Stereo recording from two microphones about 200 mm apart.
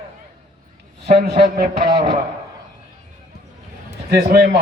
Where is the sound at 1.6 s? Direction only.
25° right (ahead or behind).